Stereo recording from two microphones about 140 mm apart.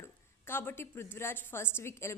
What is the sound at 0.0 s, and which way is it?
A woman's voice, 15° left (ahead or behind).